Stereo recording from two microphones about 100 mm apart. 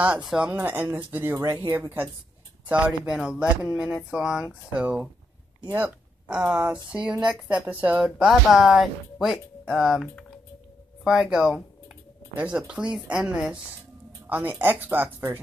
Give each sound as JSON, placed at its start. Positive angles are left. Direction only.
{"t": 0.2, "sound": "speech", "side_deg": -5}
{"t": 0.5, "sound": "speech", "side_deg": -20}
{"t": 2.7, "sound": "speech", "side_deg": -10}
{"t": 5.7, "sound": "a sound", "side_deg": -20}
{"t": 6.3, "sound": "speech", "side_deg": -15}
{"t": 8.0, "sound": "speech", "side_deg": -5}
{"t": 11.1, "sound": "speech", "side_deg": -5}
{"t": 14.2, "sound": "speech", "side_deg": -15}